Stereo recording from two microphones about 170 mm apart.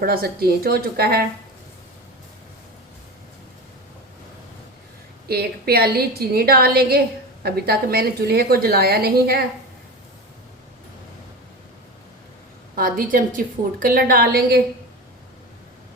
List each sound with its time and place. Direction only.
0.0 s a woman's voice: 60° right (ahead or behind)
5.3 s a woman's voice: 65° right (ahead or behind)
12.7 s a woman's voice: 55° right (ahead or behind)